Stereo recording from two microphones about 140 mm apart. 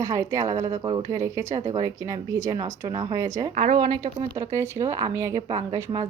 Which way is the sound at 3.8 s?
30° right (ahead or behind).